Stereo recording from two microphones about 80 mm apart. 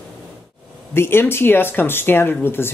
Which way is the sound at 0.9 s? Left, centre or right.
Left.